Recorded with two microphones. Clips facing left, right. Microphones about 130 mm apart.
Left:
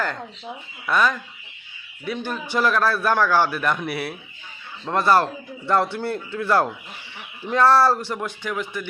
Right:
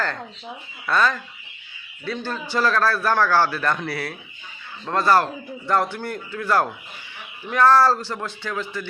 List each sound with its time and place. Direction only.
0.9 s a man's voice: 15° left (ahead or behind)